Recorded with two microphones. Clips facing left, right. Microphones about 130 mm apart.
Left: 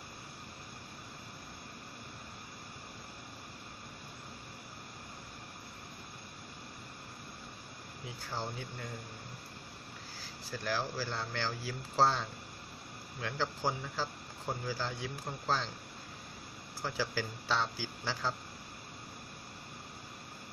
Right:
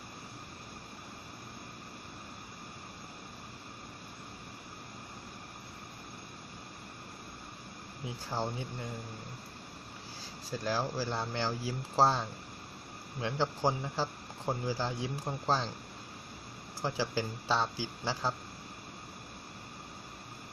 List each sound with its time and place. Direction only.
8.3 s speech: 25° right (ahead or behind)
10.5 s a man's voice: 25° right (ahead or behind)
16.8 s speech: 30° right (ahead or behind)